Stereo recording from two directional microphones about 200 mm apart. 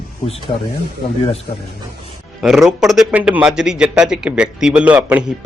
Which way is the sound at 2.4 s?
Centre (ahead or behind).